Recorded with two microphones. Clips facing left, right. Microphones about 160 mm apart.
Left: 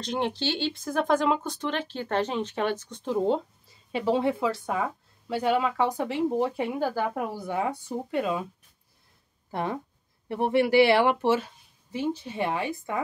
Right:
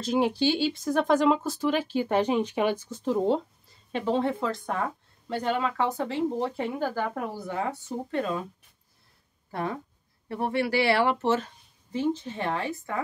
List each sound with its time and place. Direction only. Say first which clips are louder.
0.0 s speech: right 4 dB; 5° right (ahead or behind)
9.5 s speech: left 1 dB; 20° left (ahead or behind)